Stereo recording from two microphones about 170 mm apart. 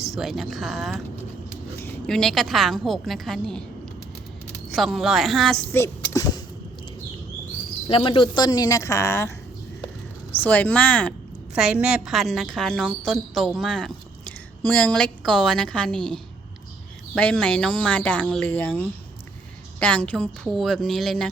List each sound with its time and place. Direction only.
0.0 s a woman's voice: centre (ahead or behind)
2.0 s a woman's voice: 5° left (ahead or behind)
4.7 s a woman's voice: centre (ahead or behind)
5.7 s power windows: 15° left (ahead or behind)
7.9 s speech: 30° left (ahead or behind)
10.4 s speech: 10° left (ahead or behind)
11.5 s a woman's voice: 5° right (ahead or behind)